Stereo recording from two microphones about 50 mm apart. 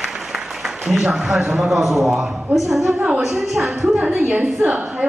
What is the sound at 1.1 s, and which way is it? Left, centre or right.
A man's voice, centre.